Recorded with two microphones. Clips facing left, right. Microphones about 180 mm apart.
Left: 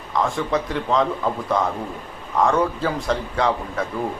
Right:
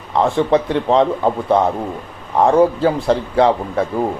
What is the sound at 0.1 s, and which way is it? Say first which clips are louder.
A man's voice: right 7 dB; 35° right (ahead or behind).